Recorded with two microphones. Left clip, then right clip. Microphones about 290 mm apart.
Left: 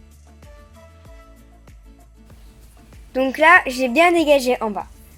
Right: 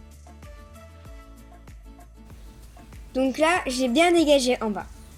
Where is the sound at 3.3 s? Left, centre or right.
Left.